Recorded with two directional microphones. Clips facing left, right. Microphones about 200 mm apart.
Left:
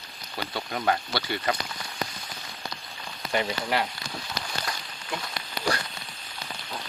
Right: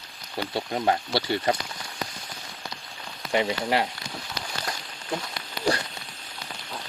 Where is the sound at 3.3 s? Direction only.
20° right (ahead or behind).